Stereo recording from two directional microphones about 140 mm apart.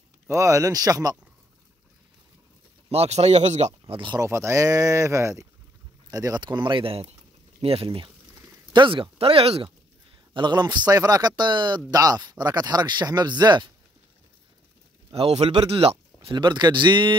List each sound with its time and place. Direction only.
0.3 s a man's voice: 20° right (ahead or behind)
2.9 s speech: 45° right (ahead or behind)
3.8 s speech: 35° right (ahead or behind)
4.2 s a man's voice: 20° right (ahead or behind); by 9.7 s 45° right (ahead or behind)
10.3 s a man's voice: 30° right (ahead or behind)
15.0 s speech: 45° right (ahead or behind)
16.3 s speech: 30° right (ahead or behind)